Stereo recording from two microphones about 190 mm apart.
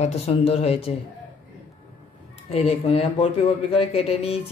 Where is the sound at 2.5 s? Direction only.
30° left (ahead or behind).